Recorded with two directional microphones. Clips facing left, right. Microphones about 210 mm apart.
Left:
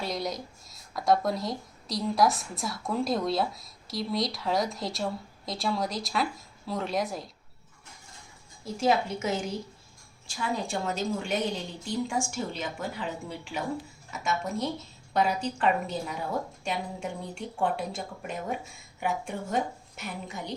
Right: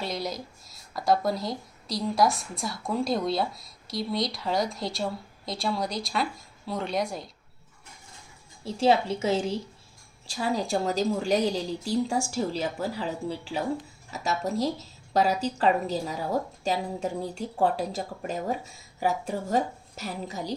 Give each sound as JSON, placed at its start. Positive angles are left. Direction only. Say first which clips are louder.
{"t": 0.0, "sound": "speech", "louder": "even", "side_deg": 0}
{"t": 8.6, "sound": "a woman's voice", "louder": "right 3 dB", "side_deg": -30}